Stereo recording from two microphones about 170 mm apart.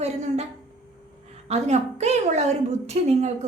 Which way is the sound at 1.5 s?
40° right (ahead or behind).